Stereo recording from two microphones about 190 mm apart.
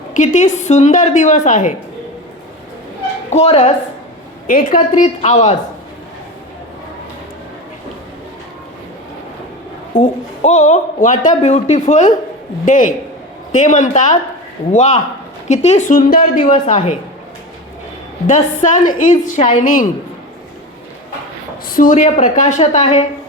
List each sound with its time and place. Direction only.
0.1 s a woman's voice: 40° left (ahead or behind)
3.2 s a woman's voice: 35° left (ahead or behind)
4.4 s a woman's voice: 45° left (ahead or behind)
10.0 s a woman's voice: 40° left (ahead or behind)
18.3 s a woman's voice: 45° left (ahead or behind)
19.6 s a woman's voice: 45° left (ahead or behind)
21.7 s a woman's voice: 45° left (ahead or behind)